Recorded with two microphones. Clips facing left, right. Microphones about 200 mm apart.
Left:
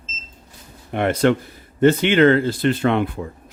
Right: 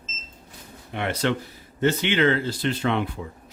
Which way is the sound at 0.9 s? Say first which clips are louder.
Left 8 dB; 50° left (ahead or behind).